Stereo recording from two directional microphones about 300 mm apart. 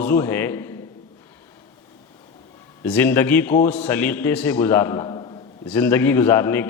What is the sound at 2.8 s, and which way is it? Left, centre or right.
A man's voice, centre.